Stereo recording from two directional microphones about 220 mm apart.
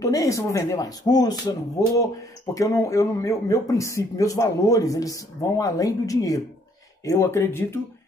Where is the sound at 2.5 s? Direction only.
15° left (ahead or behind).